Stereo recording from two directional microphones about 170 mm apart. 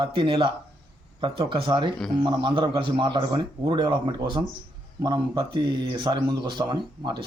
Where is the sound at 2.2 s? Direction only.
25° right (ahead or behind).